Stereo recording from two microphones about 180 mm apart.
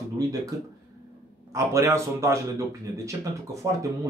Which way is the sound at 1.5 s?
15° right (ahead or behind).